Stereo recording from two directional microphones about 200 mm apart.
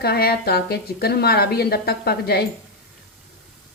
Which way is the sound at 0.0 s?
50° left (ahead or behind).